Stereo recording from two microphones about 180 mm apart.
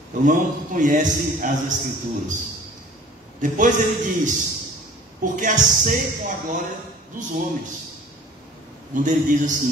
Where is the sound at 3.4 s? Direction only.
45° right (ahead or behind).